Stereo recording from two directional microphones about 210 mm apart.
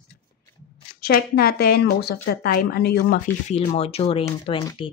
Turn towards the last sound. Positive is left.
turn(degrees=25)  # may be behind; listen again after turning